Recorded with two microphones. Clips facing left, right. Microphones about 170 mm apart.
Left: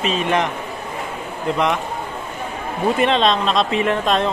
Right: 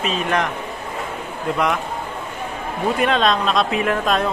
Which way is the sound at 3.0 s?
Centre (ahead or behind).